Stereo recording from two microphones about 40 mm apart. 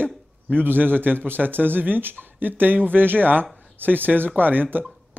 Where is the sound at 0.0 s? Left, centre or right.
Right.